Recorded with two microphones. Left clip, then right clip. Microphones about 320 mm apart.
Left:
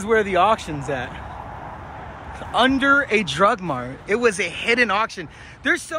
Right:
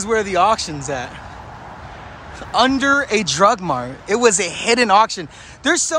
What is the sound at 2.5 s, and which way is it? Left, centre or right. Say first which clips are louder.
Speech: right 2 dB; centre.